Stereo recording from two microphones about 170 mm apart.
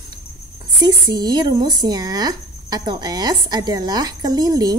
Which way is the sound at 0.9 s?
25° right (ahead or behind).